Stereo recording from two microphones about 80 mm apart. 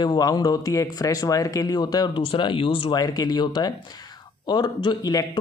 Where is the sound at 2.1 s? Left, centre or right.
Left.